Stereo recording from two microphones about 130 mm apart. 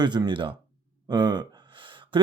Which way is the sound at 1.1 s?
35° right (ahead or behind).